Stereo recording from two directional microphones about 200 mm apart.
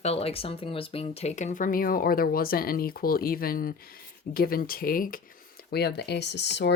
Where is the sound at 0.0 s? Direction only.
30° left (ahead or behind).